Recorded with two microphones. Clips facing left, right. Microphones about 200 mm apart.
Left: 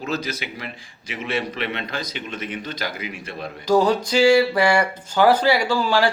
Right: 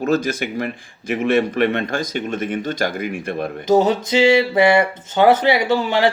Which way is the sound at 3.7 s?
20° right (ahead or behind).